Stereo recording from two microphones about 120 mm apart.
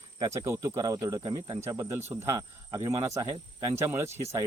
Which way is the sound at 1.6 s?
20° right (ahead or behind).